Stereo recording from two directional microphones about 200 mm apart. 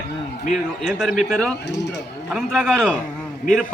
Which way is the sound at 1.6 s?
60° left (ahead or behind).